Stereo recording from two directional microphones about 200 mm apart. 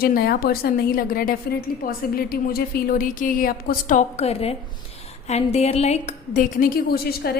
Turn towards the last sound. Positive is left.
turn(degrees=50)  # may be behind; listen again after turning